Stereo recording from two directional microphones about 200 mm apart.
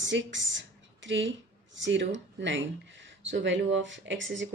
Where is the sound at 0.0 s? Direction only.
65° right (ahead or behind).